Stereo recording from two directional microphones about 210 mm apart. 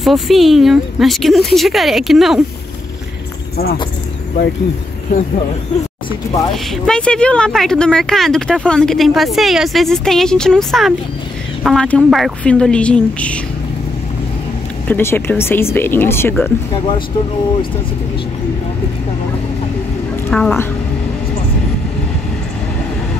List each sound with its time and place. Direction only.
0.0 s speech: centre (ahead or behind)
3.5 s speech: 50° left (ahead or behind)
6.5 s speech: 5° left (ahead or behind)
14.9 s speech: 10° left (ahead or behind)
20.2 s a woman's voice: 5° left (ahead or behind)